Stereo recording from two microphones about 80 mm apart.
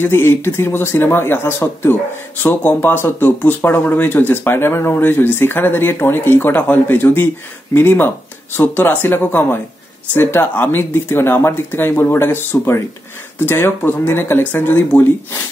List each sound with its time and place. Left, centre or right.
0.0 s speech: left